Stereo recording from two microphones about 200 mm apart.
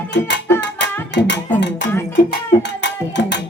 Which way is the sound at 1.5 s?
60° left (ahead or behind).